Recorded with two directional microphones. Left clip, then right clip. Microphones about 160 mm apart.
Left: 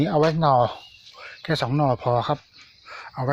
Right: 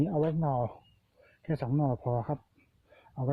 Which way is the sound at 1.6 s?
5° left (ahead or behind).